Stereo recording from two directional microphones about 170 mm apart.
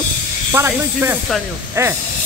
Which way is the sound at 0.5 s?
15° right (ahead or behind).